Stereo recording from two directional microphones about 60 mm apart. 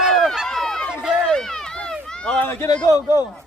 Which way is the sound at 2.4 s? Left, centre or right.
Left.